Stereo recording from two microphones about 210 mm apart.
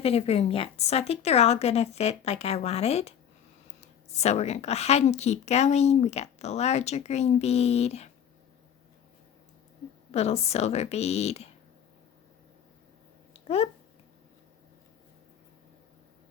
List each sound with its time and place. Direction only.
0.0 s a woman's voice: 30° left (ahead or behind)
10.1 s a woman's voice: 30° left (ahead or behind)
13.5 s speech: 30° left (ahead or behind)